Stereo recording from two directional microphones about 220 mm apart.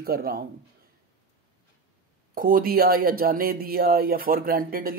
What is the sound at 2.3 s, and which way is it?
Speech, 40° right (ahead or behind).